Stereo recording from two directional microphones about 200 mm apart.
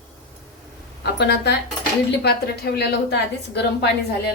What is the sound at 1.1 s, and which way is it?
A woman's voice, 55° left (ahead or behind).